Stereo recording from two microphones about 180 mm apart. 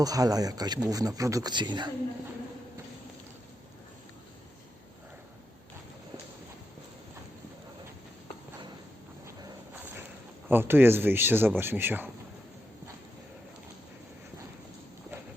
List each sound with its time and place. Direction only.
0.0 s speech: 20° right (ahead or behind)
9.2 s walk: 15° right (ahead or behind)
10.5 s speech: 10° right (ahead or behind)